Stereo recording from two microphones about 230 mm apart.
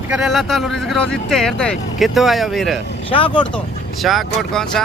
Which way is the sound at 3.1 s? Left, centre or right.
Left.